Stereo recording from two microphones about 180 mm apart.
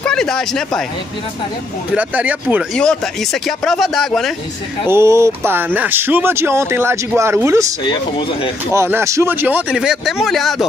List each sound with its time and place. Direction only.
0.0 s speech: 5° left (ahead or behind)
2.0 s speech: 10° right (ahead or behind)
2.7 s speech: 5° left (ahead or behind)
4.8 s speech: 15° right (ahead or behind)
7.8 s speech: 25° left (ahead or behind)
8.7 s speech: 15° right (ahead or behind)